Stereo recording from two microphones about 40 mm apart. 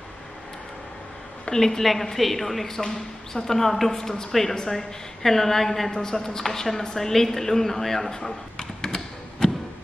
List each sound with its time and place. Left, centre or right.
1.4 s a woman's voice: centre
1.8 s a woman's voice: centre